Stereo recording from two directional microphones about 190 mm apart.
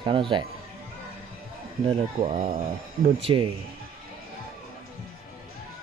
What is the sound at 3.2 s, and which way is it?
Speech, 30° right (ahead or behind).